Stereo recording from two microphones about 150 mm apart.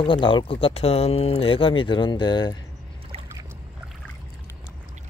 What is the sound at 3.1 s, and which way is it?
Boat, 40° right (ahead or behind).